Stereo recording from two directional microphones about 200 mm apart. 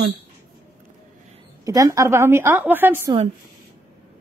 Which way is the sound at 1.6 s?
15° right (ahead or behind).